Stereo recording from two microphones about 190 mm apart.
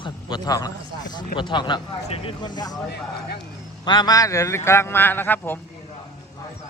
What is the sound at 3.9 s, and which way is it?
A man's voice, 20° left (ahead or behind).